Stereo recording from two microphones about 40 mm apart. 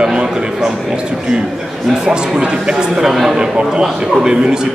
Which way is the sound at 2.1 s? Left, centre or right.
Right.